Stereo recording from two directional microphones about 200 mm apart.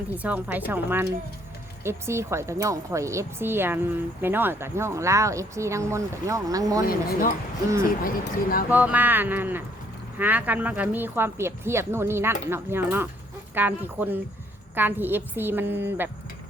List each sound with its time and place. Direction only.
0.1 s speech: 10° right (ahead or behind)
6.8 s speech: 45° left (ahead or behind)
8.7 s speech: 10° right (ahead or behind)